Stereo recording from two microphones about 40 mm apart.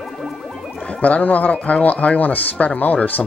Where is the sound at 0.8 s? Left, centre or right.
Left.